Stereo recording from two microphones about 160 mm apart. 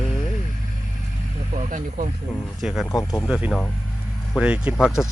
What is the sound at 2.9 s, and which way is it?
Speech, 20° left (ahead or behind).